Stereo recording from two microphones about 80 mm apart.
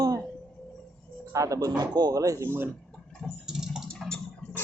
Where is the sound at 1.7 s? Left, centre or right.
Right.